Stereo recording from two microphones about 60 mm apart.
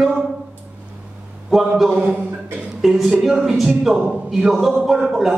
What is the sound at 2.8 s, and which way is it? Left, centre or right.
A man's voice, centre.